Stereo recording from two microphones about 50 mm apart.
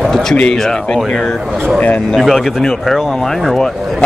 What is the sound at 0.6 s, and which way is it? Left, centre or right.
Speech, centre.